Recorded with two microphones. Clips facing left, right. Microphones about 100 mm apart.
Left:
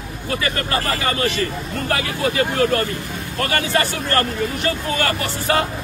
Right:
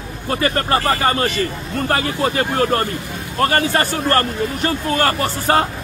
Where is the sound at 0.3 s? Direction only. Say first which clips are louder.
Right 5 dB; 40° right (ahead or behind).